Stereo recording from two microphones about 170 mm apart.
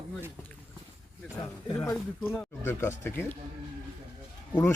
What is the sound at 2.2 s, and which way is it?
Speech, 15° left (ahead or behind).